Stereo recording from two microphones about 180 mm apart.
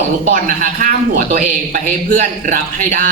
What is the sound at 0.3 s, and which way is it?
A woman's voice, 50° right (ahead or behind).